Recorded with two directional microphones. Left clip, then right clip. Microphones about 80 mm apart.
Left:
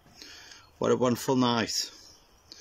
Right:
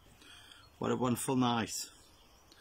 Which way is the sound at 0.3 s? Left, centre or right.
Right.